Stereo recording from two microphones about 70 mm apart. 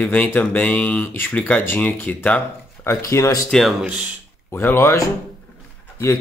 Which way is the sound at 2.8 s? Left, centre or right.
Left.